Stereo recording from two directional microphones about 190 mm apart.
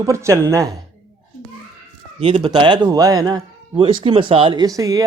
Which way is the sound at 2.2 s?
35° right (ahead or behind).